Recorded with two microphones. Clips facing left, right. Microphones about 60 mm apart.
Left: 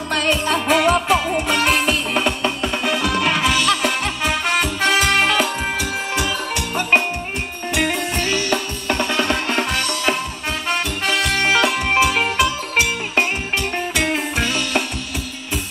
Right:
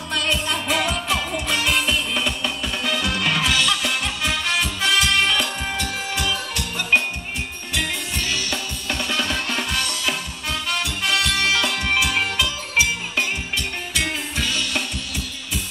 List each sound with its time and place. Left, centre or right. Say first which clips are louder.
0.1 s music: left 5 dB; left
3.2 s music: left 2 dB; centre
3.6 s music: left 4 dB; left
5.8 s music: left 4 dB; centre
6.9 s music: left 2 dB; left
11.2 s music: left 4 dB; left
11.7 s music: left 3 dB; left
12.7 s music: left 1 dB; left